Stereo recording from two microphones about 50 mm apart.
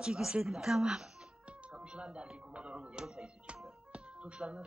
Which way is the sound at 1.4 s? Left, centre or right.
Right.